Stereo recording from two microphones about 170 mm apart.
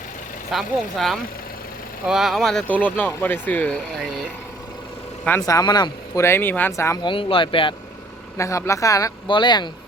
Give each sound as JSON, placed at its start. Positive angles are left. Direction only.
{"t": 0.5, "sound": "speech", "side_deg": 0}
{"t": 5.2, "sound": "speech", "side_deg": 15}
{"t": 8.4, "sound": "speech", "side_deg": 15}